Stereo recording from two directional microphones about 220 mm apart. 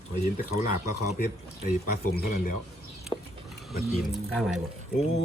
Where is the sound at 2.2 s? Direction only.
40° left (ahead or behind).